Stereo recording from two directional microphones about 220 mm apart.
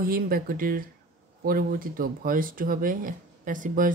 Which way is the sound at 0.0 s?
40° right (ahead or behind).